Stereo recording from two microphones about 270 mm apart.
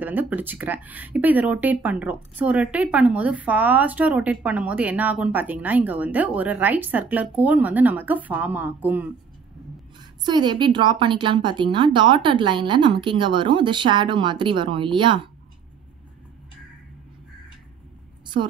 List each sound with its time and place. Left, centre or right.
0.0 s speech: centre
10.2 s a woman's voice: centre
18.2 s a sound: centre